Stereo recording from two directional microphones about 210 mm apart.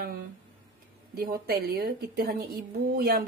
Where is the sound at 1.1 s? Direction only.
45° right (ahead or behind).